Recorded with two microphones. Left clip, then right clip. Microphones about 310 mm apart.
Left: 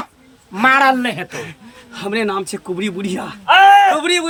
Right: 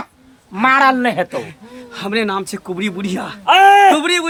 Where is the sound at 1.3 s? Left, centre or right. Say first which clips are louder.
Right 4 dB; centre.